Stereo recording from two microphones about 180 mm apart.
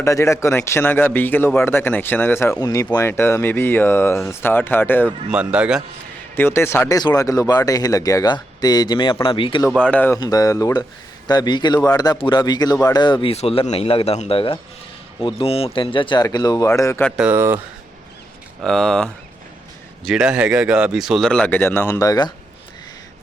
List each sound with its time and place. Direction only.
0.0 s a man's voice: 15° left (ahead or behind)
5.3 s speech: 5° right (ahead or behind)
6.3 s a man's voice: 10° left (ahead or behind); by 9.6 s 30° left (ahead or behind)
9.6 s a man's voice: centre (ahead or behind)
10.2 s speech: 20° left (ahead or behind)
17.1 s speech: 5° right (ahead or behind)
18.6 s speech: 5° left (ahead or behind); by 22.3 s 20° left (ahead or behind)